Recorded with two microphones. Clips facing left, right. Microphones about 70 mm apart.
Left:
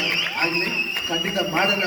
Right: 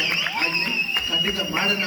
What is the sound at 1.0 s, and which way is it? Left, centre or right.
Speech, left.